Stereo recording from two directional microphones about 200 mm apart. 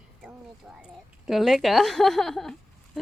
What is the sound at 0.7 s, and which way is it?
Speech, centre (ahead or behind).